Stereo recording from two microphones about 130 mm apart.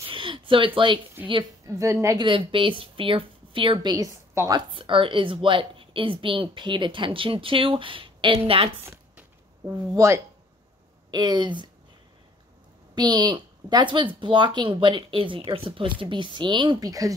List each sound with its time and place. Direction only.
0.0 s speech: 40° right (ahead or behind)
1.7 s speech: 25° right (ahead or behind)
2.2 s a woman's voice: 40° right (ahead or behind)
8.8 s a sound: 20° right (ahead or behind)
9.7 s speech: 20° right (ahead or behind)
11.1 s a woman's voice: 35° right (ahead or behind)
12.9 s a woman's voice: 35° right (ahead or behind)